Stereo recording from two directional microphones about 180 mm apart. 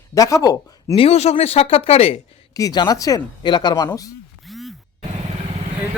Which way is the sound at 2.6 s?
20° left (ahead or behind).